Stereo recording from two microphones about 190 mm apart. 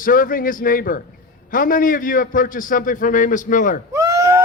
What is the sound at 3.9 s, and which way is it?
Sheep, 15° right (ahead or behind).